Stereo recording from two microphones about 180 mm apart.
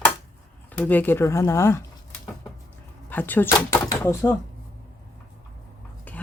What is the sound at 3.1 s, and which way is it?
Speech, 10° left (ahead or behind).